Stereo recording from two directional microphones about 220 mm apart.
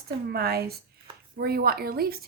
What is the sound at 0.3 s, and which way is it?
Speech, 45° right (ahead or behind).